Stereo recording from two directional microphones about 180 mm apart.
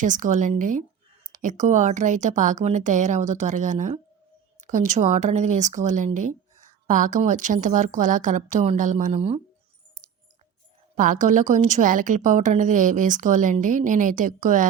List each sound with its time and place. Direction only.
0.0 s speech: 45° right (ahead or behind)
10.9 s speech: 45° right (ahead or behind)